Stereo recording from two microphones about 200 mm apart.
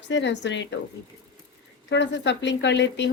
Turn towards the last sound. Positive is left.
turn(degrees=60)  # may be behind; listen again after turning